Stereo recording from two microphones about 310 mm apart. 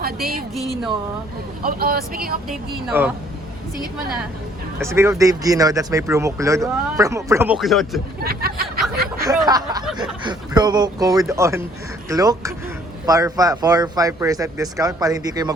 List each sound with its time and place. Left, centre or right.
0.0 s a woman's voice: right
0.5 s speech: centre
1.6 s speech: right
2.5 s speech: centre
4.8 s speech: centre
8.2 s speech: right
9.1 s speech: centre